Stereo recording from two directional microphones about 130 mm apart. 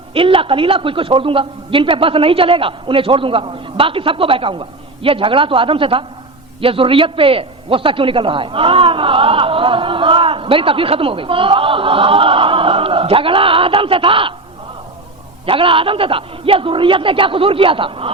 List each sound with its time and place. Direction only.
0.1 s a man's voice: 45° right (ahead or behind)
15.4 s a man's voice: 45° right (ahead or behind)